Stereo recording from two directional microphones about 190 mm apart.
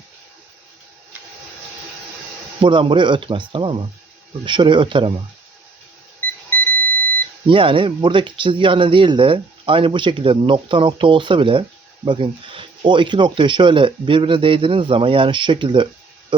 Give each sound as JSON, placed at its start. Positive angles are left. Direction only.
{"t": 2.6, "sound": "speech", "side_deg": -25}
{"t": 7.4, "sound": "speech", "side_deg": -25}